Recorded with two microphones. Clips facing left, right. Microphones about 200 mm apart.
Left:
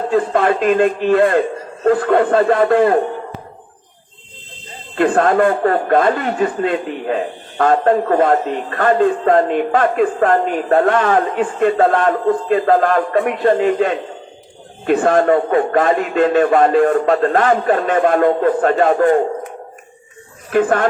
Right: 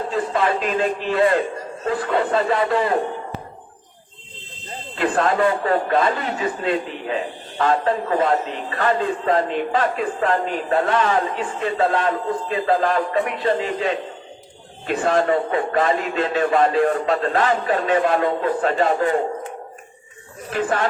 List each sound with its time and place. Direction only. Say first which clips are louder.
0.1 s speech: left 7 dB; 50° left (ahead or behind)
4.9 s speech: left 6 dB; 50° left (ahead or behind)
20.5 s speech: left 7 dB; 50° left (ahead or behind)